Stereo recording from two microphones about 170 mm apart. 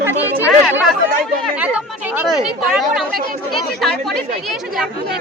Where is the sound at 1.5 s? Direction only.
10° right (ahead or behind).